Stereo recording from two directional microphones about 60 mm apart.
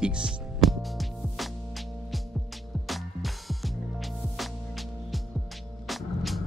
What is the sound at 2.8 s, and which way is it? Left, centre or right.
Music, centre.